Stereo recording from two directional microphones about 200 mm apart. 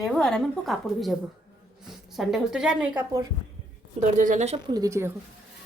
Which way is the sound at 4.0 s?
40° right (ahead or behind).